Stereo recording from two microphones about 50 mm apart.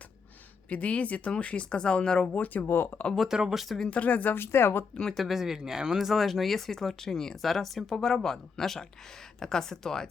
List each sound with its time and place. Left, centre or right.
0.7 s speech: left
2.2 s speech: left
2.6 s speech: left
3.2 s speech: centre
3.8 s speech: left
4.4 s speech: left
5.1 s speech: centre